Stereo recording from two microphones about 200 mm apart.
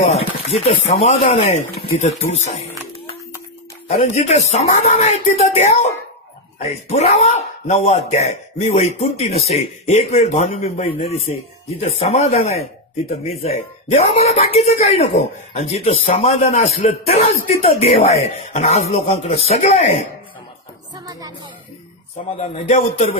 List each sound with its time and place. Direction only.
0.0 s chopping: 35° left (ahead or behind)
1.0 s speech: 35° left (ahead or behind)
3.9 s speech: 35° left (ahead or behind)
20.9 s music: 20° right (ahead or behind)
22.4 s speech: 30° left (ahead or behind)